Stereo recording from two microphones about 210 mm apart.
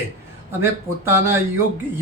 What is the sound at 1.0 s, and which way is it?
Speech, 10° right (ahead or behind).